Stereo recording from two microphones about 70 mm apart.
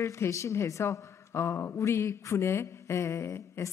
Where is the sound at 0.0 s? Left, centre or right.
Left.